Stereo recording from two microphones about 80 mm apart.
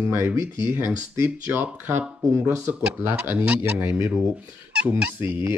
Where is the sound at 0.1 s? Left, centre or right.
Right.